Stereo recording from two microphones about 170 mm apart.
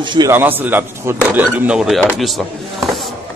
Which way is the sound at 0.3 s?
10° right (ahead or behind).